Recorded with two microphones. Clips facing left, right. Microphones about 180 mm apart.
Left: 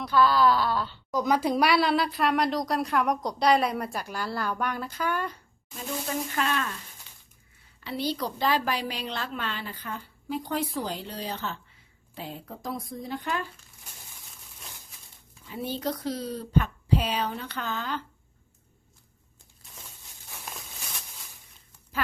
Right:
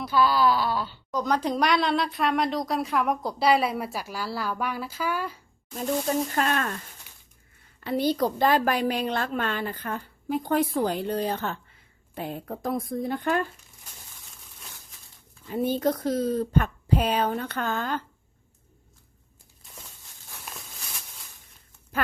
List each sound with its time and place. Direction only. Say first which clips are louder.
0.0 s a woman's voice: even; 5° right (ahead or behind)
1.1 s a woman's voice: left 1 dB; 10° left (ahead or behind)
6.3 s a woman's voice: right 3 dB; 50° right (ahead or behind)
7.8 s a woman's voice: right 6 dB; 50° right (ahead or behind)
15.4 s a woman's voice: right 7 dB; 50° right (ahead or behind)